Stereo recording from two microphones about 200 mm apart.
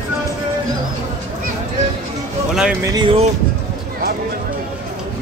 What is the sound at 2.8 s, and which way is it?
Speech, 20° right (ahead or behind).